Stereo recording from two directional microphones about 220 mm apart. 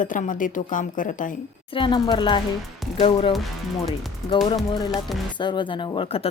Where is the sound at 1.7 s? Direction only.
20° left (ahead or behind).